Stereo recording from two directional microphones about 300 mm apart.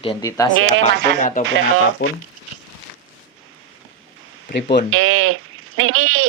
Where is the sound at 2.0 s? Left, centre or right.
Left.